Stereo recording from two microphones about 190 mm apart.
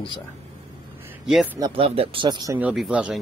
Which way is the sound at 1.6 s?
30° right (ahead or behind).